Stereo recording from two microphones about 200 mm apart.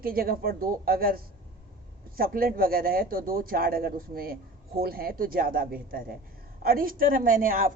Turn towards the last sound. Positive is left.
turn(degrees=-45)  # may be behind; listen again after turning